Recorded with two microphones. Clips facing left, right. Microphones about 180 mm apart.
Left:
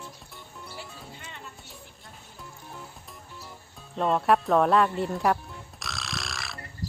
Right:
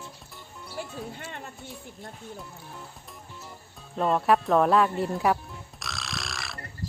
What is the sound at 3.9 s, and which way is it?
Music, centre (ahead or behind).